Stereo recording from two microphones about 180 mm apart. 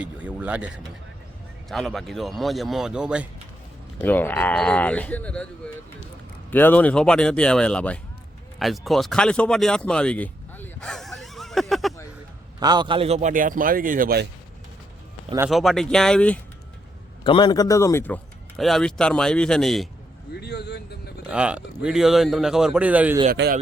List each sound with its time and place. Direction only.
0.0 s speech: 5° right (ahead or behind)
1.7 s a man's voice: centre (ahead or behind)
4.0 s speech: 10° left (ahead or behind)
6.5 s a man's voice: 10° left (ahead or behind)
8.5 s a sound: centre (ahead or behind)
12.5 s a man's voice: 25° right (ahead or behind); by 14.3 s 55° right (ahead or behind)
15.4 s a man's voice: centre (ahead or behind)
17.2 s a man's voice: 25° left (ahead or behind); by 19.9 s centre (ahead or behind)
20.3 s a sound: 65° left (ahead or behind)
21.2 s a man's voice: 5° right (ahead or behind)
23.3 s speech: 55° right (ahead or behind)